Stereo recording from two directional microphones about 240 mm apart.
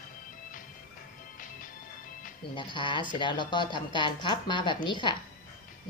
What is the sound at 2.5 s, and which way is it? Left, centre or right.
A woman's voice, centre.